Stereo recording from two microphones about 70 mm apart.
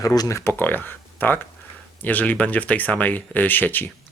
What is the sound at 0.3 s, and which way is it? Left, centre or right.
Speech, left.